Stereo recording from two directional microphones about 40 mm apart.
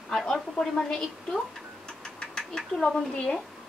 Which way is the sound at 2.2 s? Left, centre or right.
Centre.